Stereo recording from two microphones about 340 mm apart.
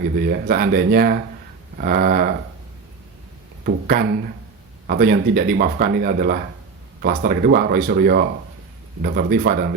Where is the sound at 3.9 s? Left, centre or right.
Right.